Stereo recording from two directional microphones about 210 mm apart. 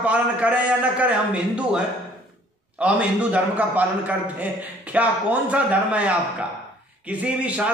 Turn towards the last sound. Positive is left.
turn(degrees=-5)  # may be behind; listen again after turning